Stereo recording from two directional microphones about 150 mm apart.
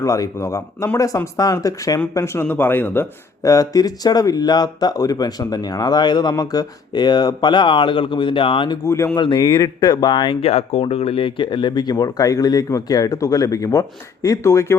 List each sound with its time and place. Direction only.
0.0 s speech: 20° left (ahead or behind)
8.8 s speech: 20° left (ahead or behind)
9.1 s speech: 30° left (ahead or behind)
10.5 s speech: 45° left (ahead or behind); by 14.8 s 20° left (ahead or behind)